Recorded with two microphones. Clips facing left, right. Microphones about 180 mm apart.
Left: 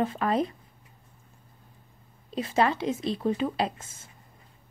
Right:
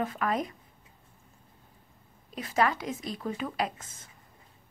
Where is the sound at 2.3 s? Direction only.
25° left (ahead or behind).